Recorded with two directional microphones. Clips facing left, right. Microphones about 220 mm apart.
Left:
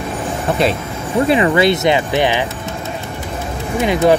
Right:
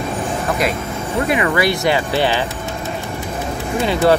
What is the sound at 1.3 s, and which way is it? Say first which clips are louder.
Speech: left 4 dB; 25° left (ahead or behind).